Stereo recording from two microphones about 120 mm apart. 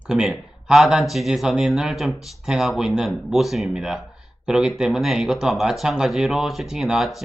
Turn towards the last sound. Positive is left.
turn(degrees=0)  # may be behind; listen again after turning